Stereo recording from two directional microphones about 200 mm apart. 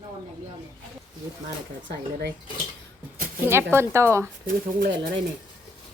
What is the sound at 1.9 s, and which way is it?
Speech, 55° right (ahead or behind).